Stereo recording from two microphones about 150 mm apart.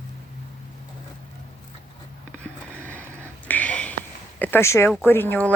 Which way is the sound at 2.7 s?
10° left (ahead or behind).